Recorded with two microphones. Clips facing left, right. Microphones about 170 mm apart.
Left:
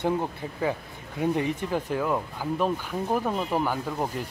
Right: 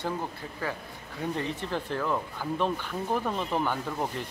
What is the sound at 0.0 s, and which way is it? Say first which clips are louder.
A man's voice: left 6 dB; 20° left (ahead or behind).